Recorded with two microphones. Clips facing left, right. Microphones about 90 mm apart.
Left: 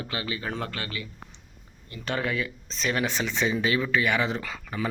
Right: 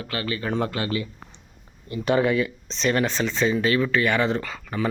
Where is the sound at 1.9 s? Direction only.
10° right (ahead or behind).